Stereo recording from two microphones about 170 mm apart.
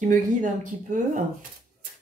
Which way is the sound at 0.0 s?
45° right (ahead or behind).